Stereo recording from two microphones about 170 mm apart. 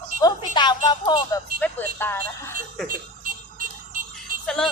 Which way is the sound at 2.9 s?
55° right (ahead or behind).